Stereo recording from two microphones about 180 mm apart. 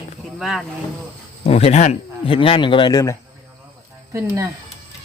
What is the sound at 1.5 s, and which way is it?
Speech, 35° left (ahead or behind).